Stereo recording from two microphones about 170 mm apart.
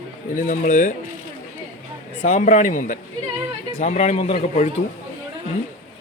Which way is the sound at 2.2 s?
45° left (ahead or behind).